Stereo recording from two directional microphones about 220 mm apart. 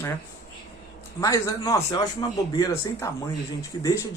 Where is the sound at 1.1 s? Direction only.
15° left (ahead or behind).